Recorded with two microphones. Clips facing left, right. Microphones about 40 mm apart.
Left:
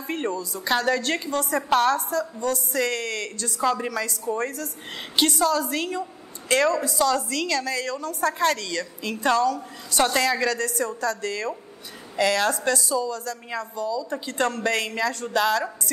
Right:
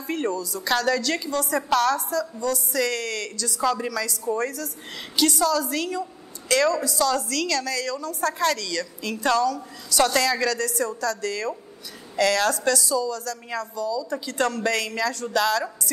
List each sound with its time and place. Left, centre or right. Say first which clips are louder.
0.0 s a woman's voice: right 1 dB; left